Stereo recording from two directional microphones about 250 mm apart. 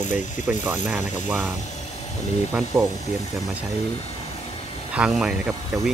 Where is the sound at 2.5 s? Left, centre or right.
Centre.